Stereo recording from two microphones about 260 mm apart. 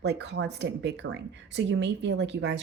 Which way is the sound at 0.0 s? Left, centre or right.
Right.